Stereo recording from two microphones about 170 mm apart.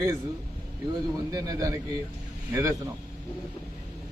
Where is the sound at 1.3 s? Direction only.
20° right (ahead or behind).